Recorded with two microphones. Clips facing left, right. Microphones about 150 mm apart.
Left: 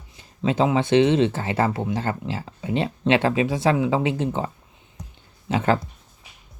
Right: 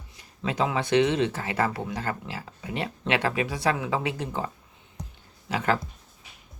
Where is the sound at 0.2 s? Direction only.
25° left (ahead or behind).